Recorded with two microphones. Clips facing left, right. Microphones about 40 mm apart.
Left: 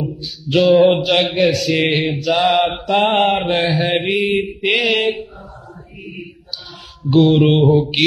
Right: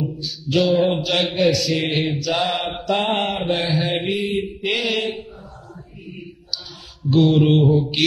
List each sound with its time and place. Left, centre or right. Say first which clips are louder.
0.0 s a sound: left 1 dB; centre
0.7 s speech: left 10 dB; left
1.1 s a man's voice: left 3 dB; left
2.9 s mantra: left 3 dB; left
3.2 s a man's voice: left 6 dB; left
3.7 s mantra: left 4 dB; left
4.0 s speech: left 5 dB; left
4.3 s mantra: left 5 dB; left
4.7 s a man's voice: left 6 dB; left
7.1 s mantra: left 4 dB; left
7.3 s a man's voice: left 3 dB; left
7.6 s speech: left 4 dB; left